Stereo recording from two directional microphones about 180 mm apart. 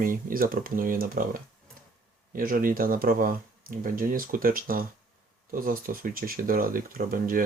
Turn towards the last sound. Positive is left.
turn(degrees=-50)  # may be behind; listen again after turning